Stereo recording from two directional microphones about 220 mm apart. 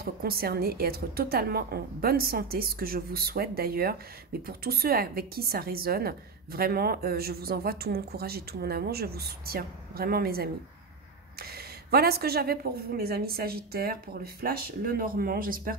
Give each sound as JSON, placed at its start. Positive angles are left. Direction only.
{"t": 0.0, "sound": "a woman's voice", "side_deg": -45}